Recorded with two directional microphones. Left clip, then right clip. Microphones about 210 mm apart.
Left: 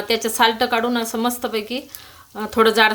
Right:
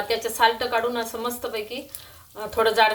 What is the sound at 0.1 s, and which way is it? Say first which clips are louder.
A woman's voice: left 4 dB; 45° left (ahead or behind).